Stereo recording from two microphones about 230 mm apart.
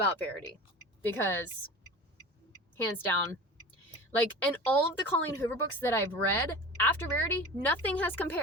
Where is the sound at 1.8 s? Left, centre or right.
Left.